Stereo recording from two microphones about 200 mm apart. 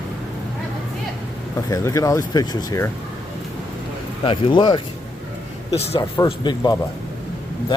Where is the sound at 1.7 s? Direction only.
15° left (ahead or behind).